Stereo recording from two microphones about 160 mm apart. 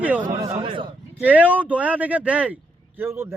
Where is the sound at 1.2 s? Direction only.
10° right (ahead or behind).